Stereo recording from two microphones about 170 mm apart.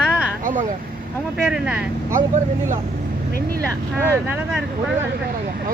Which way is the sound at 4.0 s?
15° right (ahead or behind).